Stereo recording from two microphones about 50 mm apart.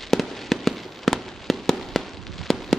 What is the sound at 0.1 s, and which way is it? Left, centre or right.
Fireworks, centre.